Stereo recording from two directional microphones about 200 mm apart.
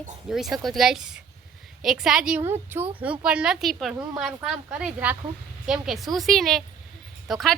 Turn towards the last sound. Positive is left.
turn(degrees=0)  # may be behind; listen again after turning